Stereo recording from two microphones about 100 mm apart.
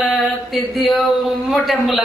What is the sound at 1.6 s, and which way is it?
Speech, centre (ahead or behind).